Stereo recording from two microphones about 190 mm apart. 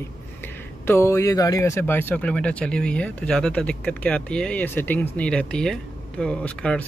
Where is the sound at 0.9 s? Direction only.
15° left (ahead or behind).